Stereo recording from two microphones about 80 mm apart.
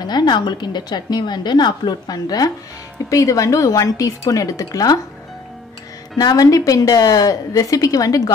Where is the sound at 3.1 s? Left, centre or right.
Left.